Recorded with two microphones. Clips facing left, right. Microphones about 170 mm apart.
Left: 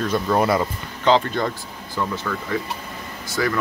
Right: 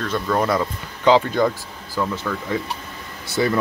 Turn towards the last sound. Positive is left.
turn(degrees=-25)  # may be behind; listen again after turning